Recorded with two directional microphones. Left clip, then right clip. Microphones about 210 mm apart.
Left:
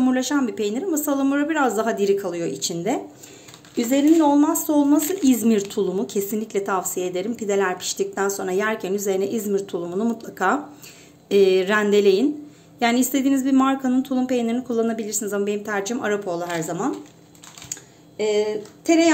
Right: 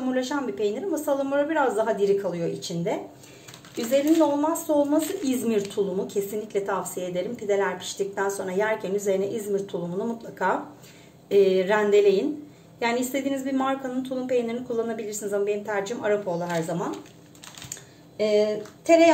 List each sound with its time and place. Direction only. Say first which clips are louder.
0.0 s speech: left 5 dB; 45° left (ahead or behind)
4.4 s a woman's voice: left 3 dB; 55° left (ahead or behind)
5.2 s speech: left 5 dB; 40° left (ahead or behind)
18.1 s speech: even; 50° left (ahead or behind)